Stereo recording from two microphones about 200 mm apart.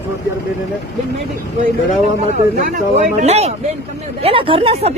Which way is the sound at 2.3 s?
40° right (ahead or behind).